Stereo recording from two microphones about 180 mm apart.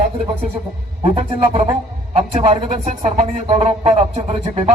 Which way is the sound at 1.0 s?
30° right (ahead or behind).